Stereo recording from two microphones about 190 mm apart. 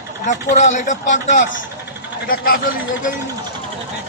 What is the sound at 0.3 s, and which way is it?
A man's voice, 40° left (ahead or behind).